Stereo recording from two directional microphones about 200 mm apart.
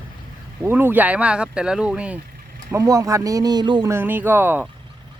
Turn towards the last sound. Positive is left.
turn(degrees=-10)  # may be behind; listen again after turning